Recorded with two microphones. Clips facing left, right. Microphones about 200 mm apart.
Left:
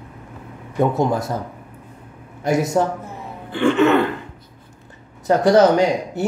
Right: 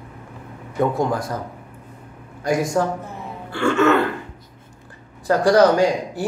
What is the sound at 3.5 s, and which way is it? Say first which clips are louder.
Throat clearing: left 2 dB; 15° left (ahead or behind).